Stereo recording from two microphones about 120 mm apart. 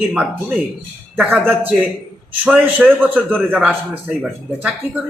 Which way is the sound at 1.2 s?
15° right (ahead or behind).